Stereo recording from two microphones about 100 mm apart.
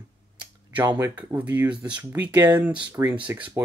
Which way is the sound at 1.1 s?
15° right (ahead or behind).